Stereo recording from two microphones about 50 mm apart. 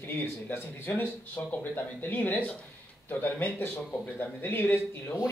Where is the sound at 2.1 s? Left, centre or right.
Left.